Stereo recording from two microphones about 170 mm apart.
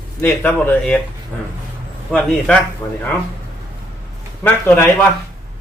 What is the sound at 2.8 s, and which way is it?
Speech, 15° left (ahead or behind).